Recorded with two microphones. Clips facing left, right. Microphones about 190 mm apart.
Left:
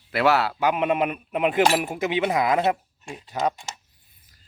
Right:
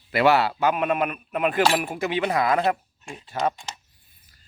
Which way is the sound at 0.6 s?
20° left (ahead or behind).